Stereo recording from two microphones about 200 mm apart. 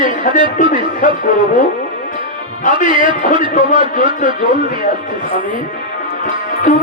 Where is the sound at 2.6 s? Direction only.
40° left (ahead or behind).